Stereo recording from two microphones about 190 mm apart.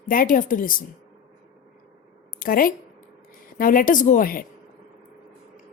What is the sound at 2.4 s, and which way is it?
A woman's voice, 45° left (ahead or behind).